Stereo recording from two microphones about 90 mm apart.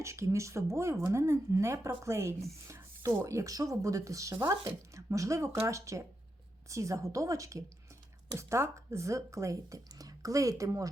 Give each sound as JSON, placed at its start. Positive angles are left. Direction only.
{"t": 0.0, "sound": "speech", "side_deg": -35}